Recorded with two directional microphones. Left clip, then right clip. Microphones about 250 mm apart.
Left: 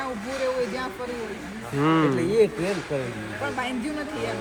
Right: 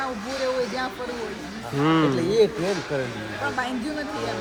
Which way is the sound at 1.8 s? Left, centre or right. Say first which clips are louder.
Right 1 dB; centre.